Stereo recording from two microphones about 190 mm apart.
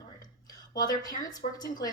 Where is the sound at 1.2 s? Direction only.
20° left (ahead or behind).